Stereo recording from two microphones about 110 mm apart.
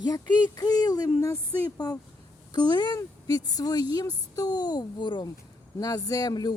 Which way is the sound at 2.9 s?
35° left (ahead or behind).